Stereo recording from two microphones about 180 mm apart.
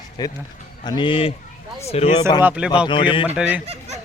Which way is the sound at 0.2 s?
20° left (ahead or behind).